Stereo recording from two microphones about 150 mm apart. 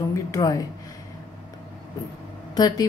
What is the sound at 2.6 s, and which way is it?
Speech, 25° left (ahead or behind).